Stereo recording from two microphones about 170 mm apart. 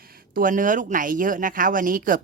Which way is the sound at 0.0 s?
60° right (ahead or behind).